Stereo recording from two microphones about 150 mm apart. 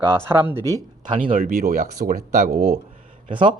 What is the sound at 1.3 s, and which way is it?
Speech, 70° right (ahead or behind).